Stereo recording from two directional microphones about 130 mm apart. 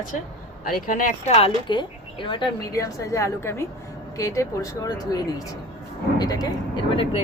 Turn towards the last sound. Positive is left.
turn(degrees=45)  # may be behind; listen again after turning